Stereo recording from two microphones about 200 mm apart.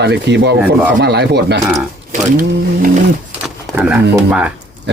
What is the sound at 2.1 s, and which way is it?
Speech, 45° right (ahead or behind).